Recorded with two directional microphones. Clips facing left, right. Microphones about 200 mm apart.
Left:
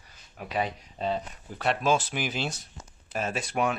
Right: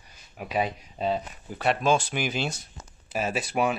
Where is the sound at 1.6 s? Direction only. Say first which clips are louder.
Right 2 dB; centre (ahead or behind).